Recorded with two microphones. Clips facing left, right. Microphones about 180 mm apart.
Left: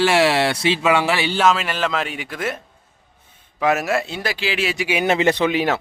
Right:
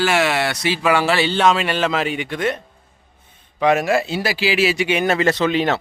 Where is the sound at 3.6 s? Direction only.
5° left (ahead or behind).